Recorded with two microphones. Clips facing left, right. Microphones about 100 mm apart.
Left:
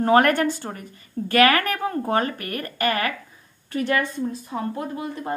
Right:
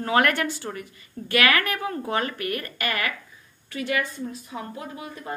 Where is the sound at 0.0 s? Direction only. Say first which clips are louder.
Left 5 dB; 40° left (ahead or behind).